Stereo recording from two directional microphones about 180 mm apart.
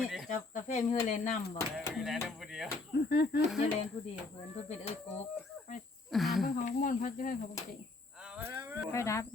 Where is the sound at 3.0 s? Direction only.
65° left (ahead or behind).